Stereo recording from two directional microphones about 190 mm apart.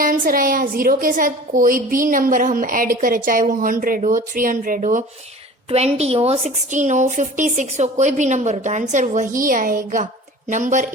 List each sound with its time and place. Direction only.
0.0 s a woman's voice: 45° right (ahead or behind)